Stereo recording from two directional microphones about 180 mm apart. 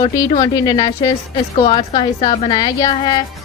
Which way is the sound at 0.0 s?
25° left (ahead or behind).